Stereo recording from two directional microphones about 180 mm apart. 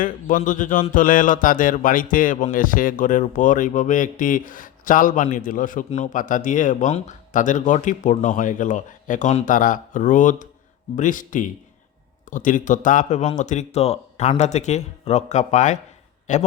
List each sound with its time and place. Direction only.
0.0 s speech: 45° left (ahead or behind)